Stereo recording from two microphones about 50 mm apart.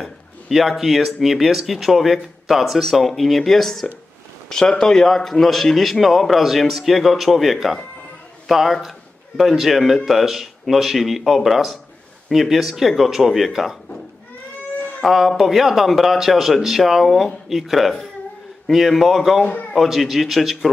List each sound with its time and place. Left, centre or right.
0.0 s a man's voice: centre
4.5 s a man's voice: centre
15.0 s a man's voice: centre